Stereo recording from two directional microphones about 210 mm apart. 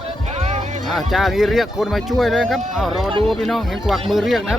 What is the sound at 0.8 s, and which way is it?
Speech, centre (ahead or behind).